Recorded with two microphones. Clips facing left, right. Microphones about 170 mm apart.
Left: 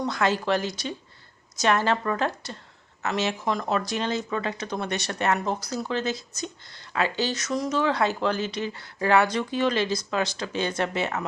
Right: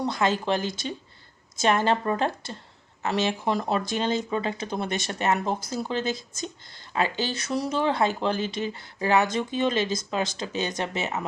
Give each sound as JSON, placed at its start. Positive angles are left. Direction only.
{"t": 0.0, "sound": "speech", "side_deg": -25}